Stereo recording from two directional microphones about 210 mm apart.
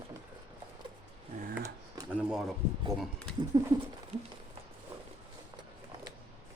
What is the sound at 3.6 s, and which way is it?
Speech, 20° right (ahead or behind).